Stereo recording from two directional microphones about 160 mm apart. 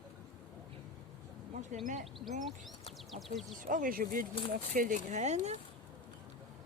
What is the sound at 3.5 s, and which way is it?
Speech, 60° right (ahead or behind).